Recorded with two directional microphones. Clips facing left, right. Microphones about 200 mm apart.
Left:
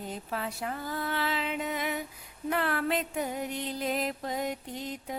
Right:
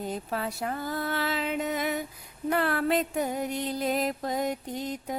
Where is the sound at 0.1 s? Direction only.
40° right (ahead or behind).